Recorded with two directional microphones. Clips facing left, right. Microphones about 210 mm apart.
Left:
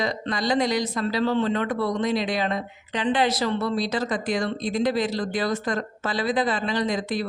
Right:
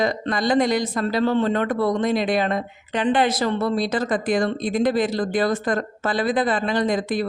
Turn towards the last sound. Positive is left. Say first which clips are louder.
# right 4 dB
turn(degrees=-50)  # may be behind; listen again after turning